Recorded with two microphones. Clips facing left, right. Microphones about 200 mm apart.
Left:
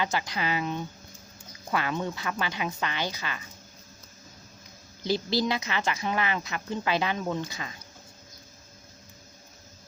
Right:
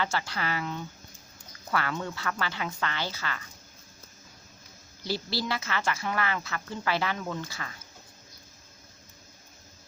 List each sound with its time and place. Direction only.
0.0 s speech: 15° left (ahead or behind)
5.0 s a woman's voice: 20° left (ahead or behind)